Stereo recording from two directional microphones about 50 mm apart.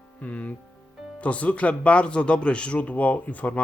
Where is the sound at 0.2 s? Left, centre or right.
Left.